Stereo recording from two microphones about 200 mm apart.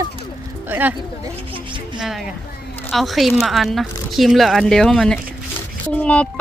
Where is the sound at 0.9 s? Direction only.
25° right (ahead or behind).